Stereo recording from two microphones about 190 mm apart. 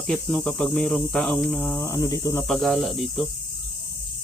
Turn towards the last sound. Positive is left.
turn(degrees=0)  # may be behind; listen again after turning